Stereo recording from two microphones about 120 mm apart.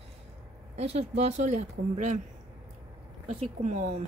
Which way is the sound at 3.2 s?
60° right (ahead or behind).